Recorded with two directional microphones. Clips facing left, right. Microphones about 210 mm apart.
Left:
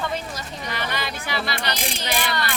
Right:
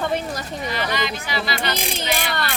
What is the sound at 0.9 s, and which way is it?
Speech, 55° left (ahead or behind).